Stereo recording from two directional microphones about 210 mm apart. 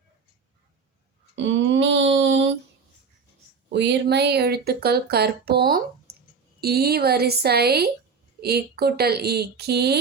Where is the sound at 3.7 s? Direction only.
55° right (ahead or behind).